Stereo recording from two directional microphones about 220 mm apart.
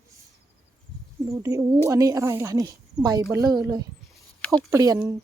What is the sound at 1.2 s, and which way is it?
A woman's voice, 15° right (ahead or behind).